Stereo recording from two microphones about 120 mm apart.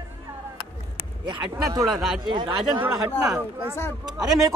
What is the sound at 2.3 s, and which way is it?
Speech, 35° right (ahead or behind).